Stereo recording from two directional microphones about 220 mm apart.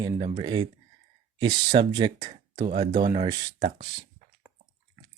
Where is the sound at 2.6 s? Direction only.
35° right (ahead or behind).